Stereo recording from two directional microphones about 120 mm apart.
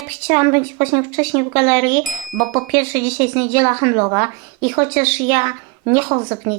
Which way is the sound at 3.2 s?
20° right (ahead or behind).